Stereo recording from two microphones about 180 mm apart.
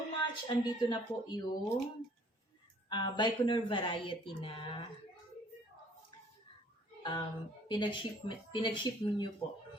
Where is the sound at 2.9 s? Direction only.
25° left (ahead or behind).